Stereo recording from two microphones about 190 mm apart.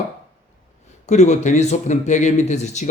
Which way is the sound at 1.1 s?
40° left (ahead or behind).